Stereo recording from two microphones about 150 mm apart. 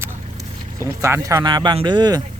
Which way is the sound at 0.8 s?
15° right (ahead or behind).